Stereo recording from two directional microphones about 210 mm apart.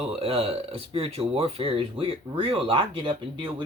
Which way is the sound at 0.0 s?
25° right (ahead or behind).